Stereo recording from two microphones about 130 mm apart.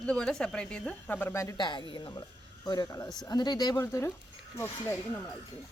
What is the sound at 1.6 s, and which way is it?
Speech, 35° left (ahead or behind).